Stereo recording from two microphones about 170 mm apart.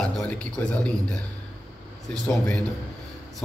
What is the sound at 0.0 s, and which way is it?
Speech, 10° left (ahead or behind).